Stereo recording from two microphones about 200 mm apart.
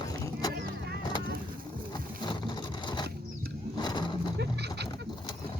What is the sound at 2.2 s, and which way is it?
Vehicle, 25° left (ahead or behind).